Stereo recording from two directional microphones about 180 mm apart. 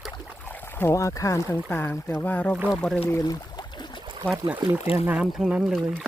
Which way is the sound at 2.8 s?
5° left (ahead or behind).